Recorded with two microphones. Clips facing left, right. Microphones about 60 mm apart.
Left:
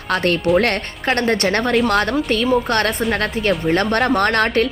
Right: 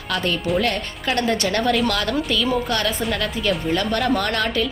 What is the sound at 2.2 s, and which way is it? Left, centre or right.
Speech, left.